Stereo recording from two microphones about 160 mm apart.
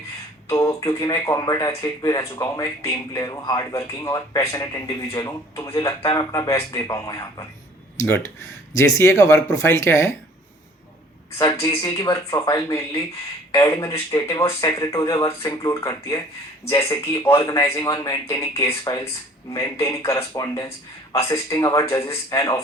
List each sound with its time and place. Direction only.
0.4 s speech: 20° left (ahead or behind)
11.3 s speech: 25° left (ahead or behind)